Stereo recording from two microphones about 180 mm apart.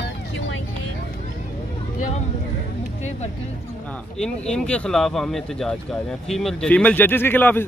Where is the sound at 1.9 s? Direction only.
45° left (ahead or behind).